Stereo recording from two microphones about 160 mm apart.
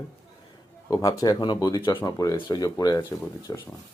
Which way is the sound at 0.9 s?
20° left (ahead or behind).